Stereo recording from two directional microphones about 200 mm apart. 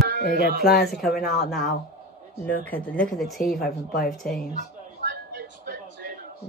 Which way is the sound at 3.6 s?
50° left (ahead or behind).